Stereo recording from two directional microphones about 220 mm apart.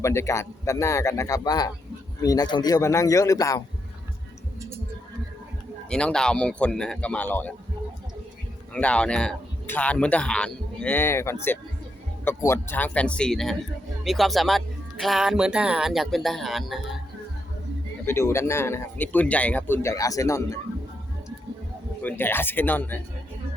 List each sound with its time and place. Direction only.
0.0 s a man's voice: 15° left (ahead or behind)
5.9 s speech: 5° left (ahead or behind)
8.7 s a man's voice: 5° left (ahead or behind)
18.0 s a man's voice: 10° left (ahead or behind)
22.2 s a man's voice: 10° left (ahead or behind)